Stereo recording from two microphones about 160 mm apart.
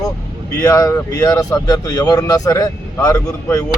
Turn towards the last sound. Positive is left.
turn(degrees=20)  # may be behind; listen again after turning